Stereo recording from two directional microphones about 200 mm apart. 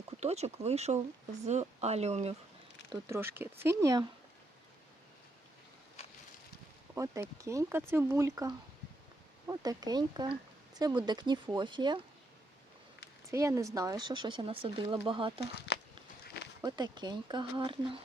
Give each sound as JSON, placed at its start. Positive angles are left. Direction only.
{"t": 0.2, "sound": "speech", "side_deg": -35}
{"t": 3.1, "sound": "speech", "side_deg": -10}
{"t": 6.9, "sound": "speech", "side_deg": -15}
{"t": 13.3, "sound": "speech", "side_deg": -15}
{"t": 16.6, "sound": "speech", "side_deg": -20}